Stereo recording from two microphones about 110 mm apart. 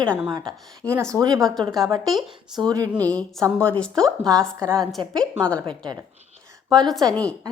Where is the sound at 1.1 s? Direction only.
35° right (ahead or behind).